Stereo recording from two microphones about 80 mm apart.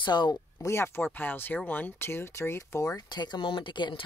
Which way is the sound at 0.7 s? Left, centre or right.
Left.